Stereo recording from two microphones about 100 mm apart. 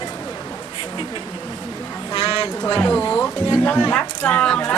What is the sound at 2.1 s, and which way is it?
Speech, 40° left (ahead or behind).